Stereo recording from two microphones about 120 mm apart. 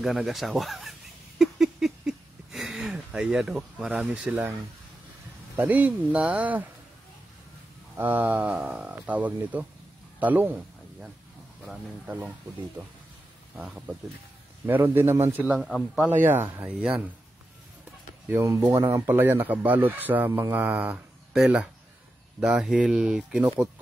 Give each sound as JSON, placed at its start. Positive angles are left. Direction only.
{"t": 0.0, "sound": "a sound", "side_deg": 0}
{"t": 5.6, "sound": "speech", "side_deg": -15}
{"t": 8.0, "sound": "speech", "side_deg": -15}
{"t": 12.8, "sound": "speech", "side_deg": -15}
{"t": 16.1, "sound": "speech", "side_deg": -15}
{"t": 18.3, "sound": "speech", "side_deg": -20}